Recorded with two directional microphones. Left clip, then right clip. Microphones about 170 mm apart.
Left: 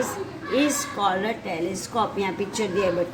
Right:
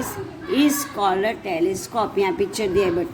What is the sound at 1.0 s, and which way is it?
A woman's voice, 45° right (ahead or behind).